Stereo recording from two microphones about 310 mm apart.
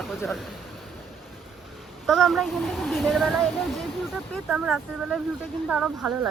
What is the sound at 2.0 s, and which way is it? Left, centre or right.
Speech, centre.